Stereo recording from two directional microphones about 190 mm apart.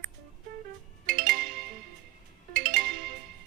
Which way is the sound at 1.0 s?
50° right (ahead or behind).